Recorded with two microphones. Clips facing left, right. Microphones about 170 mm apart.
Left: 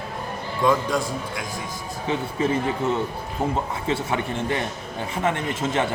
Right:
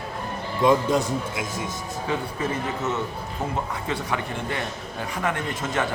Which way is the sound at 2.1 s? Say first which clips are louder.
Left 4 dB; 30° left (ahead or behind).